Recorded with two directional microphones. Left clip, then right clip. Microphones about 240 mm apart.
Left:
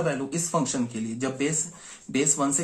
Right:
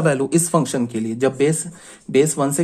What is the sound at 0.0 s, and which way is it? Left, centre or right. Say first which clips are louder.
Speech: right 10 dB; right.